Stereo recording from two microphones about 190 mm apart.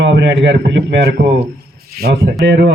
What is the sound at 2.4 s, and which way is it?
Speech, 65° right (ahead or behind).